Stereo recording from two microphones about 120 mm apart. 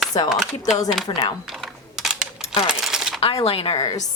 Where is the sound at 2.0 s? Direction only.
5° right (ahead or behind).